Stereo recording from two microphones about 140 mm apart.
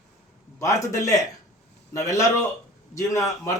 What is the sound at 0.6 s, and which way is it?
A man's voice, 25° left (ahead or behind).